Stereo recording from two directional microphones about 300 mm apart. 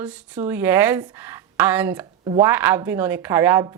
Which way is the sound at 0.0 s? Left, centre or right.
Centre.